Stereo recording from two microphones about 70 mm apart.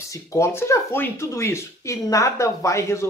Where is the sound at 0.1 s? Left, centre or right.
Left.